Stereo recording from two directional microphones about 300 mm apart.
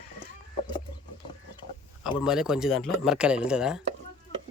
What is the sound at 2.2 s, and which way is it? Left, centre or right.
Speech, centre.